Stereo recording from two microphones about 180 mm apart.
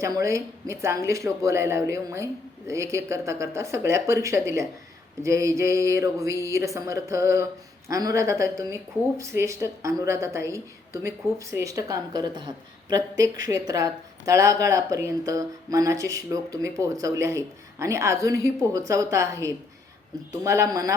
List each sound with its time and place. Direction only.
0.0 s speech: 15° right (ahead or behind)